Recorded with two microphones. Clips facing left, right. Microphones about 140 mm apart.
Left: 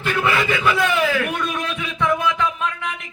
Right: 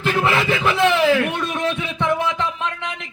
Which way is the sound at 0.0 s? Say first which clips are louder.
Right 2 dB; 30° right (ahead or behind).